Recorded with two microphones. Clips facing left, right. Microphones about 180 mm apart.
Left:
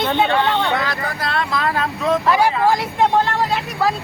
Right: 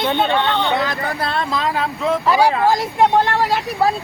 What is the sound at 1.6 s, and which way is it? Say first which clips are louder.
Speech: even; 10° right (ahead or behind).